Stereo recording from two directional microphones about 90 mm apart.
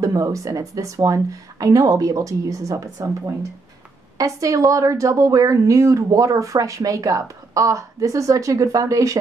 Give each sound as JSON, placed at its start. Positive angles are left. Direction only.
{"t": 0.0, "sound": "a woman's voice", "side_deg": -40}